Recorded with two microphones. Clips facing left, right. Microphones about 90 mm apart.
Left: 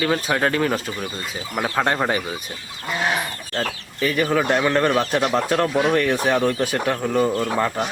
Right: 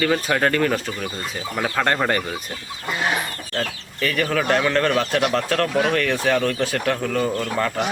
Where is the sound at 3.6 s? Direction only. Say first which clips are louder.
Left 1 dB; 15° left (ahead or behind).